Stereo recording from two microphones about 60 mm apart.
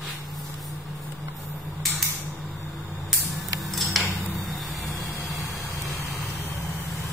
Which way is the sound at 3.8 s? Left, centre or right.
Centre.